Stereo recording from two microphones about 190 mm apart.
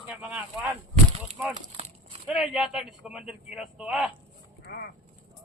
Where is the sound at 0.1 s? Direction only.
5° right (ahead or behind).